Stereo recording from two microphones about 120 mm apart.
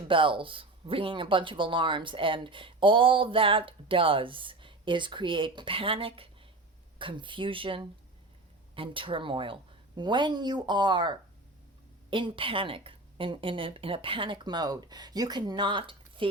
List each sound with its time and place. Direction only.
0.1 s a woman's voice: 45° right (ahead or behind)